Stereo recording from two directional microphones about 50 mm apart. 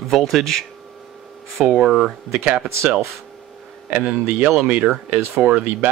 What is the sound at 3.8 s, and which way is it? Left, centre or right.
Speech, right.